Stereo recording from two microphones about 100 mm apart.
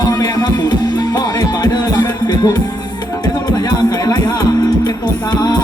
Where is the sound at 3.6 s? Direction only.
40° left (ahead or behind).